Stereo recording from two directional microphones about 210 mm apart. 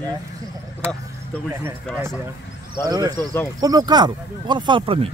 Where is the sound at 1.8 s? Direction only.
Centre (ahead or behind).